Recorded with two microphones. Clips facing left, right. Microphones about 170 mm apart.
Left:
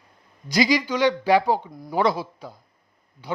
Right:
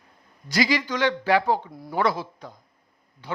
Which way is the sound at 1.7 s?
Centre (ahead or behind).